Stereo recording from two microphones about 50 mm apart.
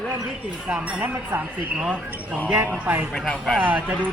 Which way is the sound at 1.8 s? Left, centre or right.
Right.